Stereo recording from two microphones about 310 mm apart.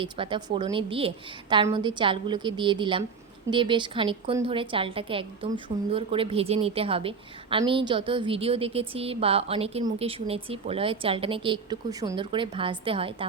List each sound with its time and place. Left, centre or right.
0.0 s a woman's voice: centre